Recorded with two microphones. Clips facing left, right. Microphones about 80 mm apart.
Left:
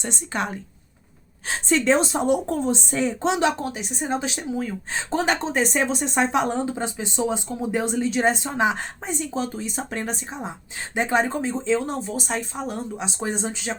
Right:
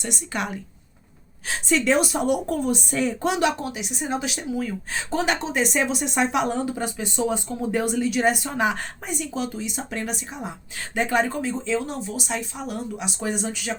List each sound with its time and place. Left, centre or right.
0.0 s a woman's voice: left